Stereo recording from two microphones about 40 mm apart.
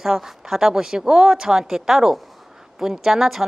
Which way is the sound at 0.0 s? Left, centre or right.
Centre.